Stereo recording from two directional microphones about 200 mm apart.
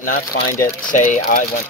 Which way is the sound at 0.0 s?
50° left (ahead or behind).